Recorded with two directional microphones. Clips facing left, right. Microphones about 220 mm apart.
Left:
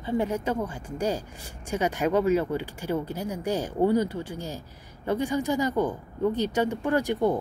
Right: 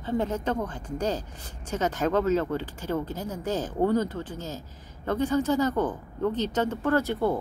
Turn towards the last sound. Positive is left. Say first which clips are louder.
# left 1 dB
turn(degrees=15)  # may be behind; listen again after turning